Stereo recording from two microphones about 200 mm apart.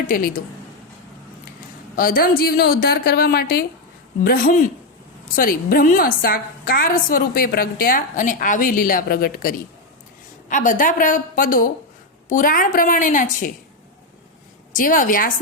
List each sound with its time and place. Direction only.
2.0 s a woman's voice: 45° left (ahead or behind)
14.7 s a woman's voice: 40° left (ahead or behind)